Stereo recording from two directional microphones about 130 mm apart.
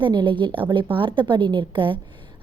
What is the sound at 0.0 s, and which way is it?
A woman's voice, 35° right (ahead or behind).